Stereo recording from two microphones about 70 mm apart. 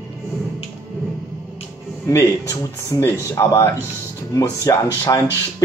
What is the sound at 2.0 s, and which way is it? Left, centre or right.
Speech, left.